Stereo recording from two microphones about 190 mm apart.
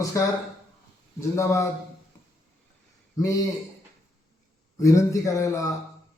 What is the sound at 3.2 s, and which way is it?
Speech, 15° left (ahead or behind).